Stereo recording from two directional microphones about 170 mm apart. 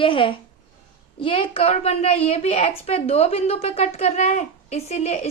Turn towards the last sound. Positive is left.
turn(degrees=40)  # may be behind; listen again after turning